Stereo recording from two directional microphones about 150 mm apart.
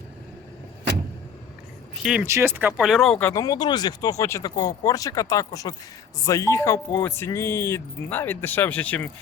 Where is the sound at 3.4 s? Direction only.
25° left (ahead or behind).